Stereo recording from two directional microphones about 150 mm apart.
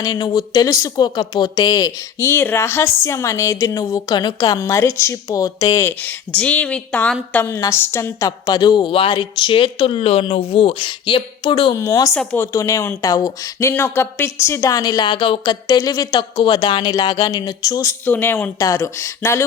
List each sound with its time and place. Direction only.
0.0 s a woman's voice: 30° left (ahead or behind)
5.8 s a woman's voice: 10° left (ahead or behind); by 11.8 s 35° left (ahead or behind)
11.8 s a woman's voice: 20° left (ahead or behind)
12.2 s a woman's voice: 10° left (ahead or behind)
18.0 s a woman's voice: 15° left (ahead or behind)